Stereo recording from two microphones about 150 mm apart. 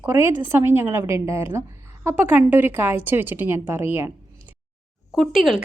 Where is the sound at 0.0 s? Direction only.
15° right (ahead or behind).